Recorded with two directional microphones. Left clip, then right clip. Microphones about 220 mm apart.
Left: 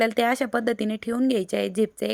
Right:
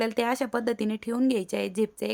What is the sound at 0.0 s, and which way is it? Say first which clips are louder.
Speech: left 5 dB; 10° left (ahead or behind).